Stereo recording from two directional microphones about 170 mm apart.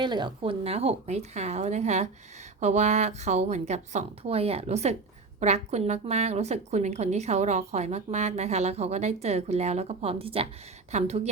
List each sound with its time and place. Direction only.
0.0 s a woman's voice: 25° right (ahead or behind)